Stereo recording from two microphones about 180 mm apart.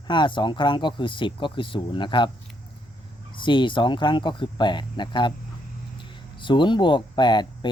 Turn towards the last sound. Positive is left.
turn(degrees=25)  # may be behind; listen again after turning